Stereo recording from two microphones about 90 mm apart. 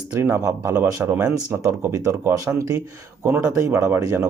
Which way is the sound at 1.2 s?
20° right (ahead or behind).